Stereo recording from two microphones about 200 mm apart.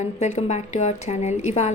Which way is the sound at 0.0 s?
35° left (ahead or behind).